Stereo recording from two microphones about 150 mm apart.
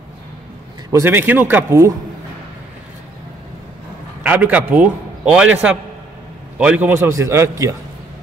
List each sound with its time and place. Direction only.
0.9 s speech: 15° right (ahead or behind)
4.2 s a man's voice: 10° right (ahead or behind)
6.9 s speech: 20° right (ahead or behind)